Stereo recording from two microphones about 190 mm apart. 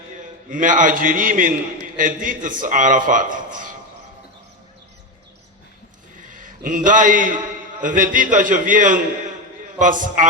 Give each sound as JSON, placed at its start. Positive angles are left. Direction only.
{"t": 0.5, "sound": "a man's voice", "side_deg": -45}
{"t": 6.3, "sound": "a man's voice", "side_deg": -45}